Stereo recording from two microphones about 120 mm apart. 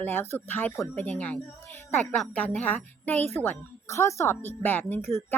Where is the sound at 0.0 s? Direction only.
15° left (ahead or behind).